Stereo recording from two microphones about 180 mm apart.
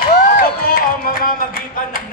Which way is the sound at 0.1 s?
55° left (ahead or behind).